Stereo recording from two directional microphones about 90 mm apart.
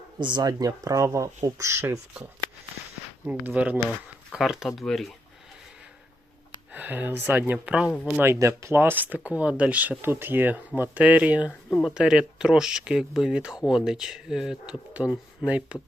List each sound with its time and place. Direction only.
0.2 s speech: 55° right (ahead or behind); by 2.0 s 35° right (ahead or behind)
3.2 s speech: 15° right (ahead or behind)
3.8 s speech: 5° right (ahead or behind)
6.7 s speech: 20° right (ahead or behind)
8.2 s speech: 30° right (ahead or behind)
11.7 s speech: 5° left (ahead or behind)
11.9 s speech: 10° right (ahead or behind)